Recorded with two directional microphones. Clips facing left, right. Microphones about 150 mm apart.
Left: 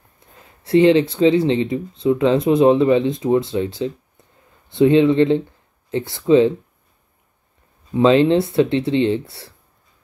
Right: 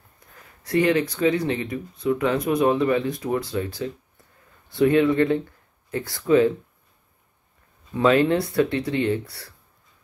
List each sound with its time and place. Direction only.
0.3 s speech: 25° left (ahead or behind)
7.9 s speech: 25° left (ahead or behind)